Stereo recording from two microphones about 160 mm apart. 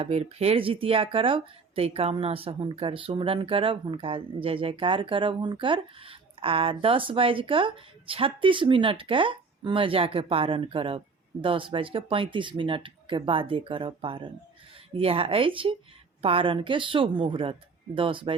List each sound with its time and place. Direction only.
0.0 s speech: 40° right (ahead or behind)